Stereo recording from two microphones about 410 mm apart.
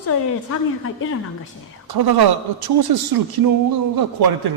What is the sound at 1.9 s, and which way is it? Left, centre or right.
Speech, right.